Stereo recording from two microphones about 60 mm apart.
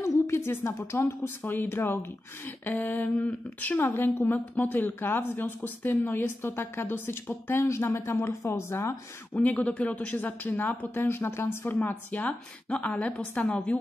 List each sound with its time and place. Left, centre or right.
0.0 s a sound: left
1.2 s a woman's voice: left
2.7 s a woman's voice: left
9.3 s a woman's voice: left
11.1 s a woman's voice: left
12.2 s a woman's voice: left